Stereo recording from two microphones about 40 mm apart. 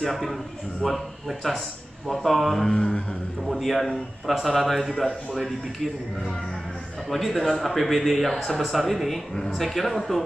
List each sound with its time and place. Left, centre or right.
0.0 s a man's voice: centre
2.7 s mantra: left
3.4 s a man's voice: centre
7.1 s a man's voice: centre